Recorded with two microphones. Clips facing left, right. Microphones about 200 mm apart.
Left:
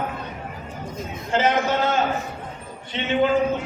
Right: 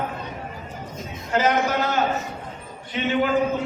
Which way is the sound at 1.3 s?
25° left (ahead or behind).